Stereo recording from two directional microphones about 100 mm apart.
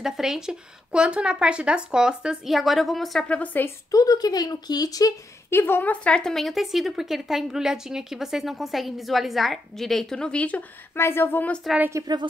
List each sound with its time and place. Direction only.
0.0 s speech: 5° right (ahead or behind)
3.3 s a woman's voice: 15° left (ahead or behind)
3.6 s speech: 35° left (ahead or behind)
5.5 s speech: 20° left (ahead or behind)
11.0 s speech: 25° left (ahead or behind)
12.0 s a woman's voice: 30° right (ahead or behind)